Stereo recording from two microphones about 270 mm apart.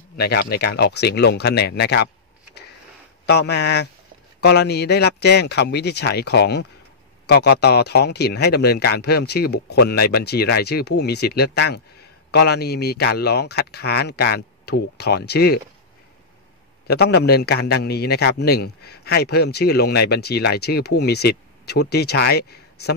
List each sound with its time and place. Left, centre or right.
0.2 s a man's voice: left
3.3 s a man's voice: left
16.8 s a man's voice: left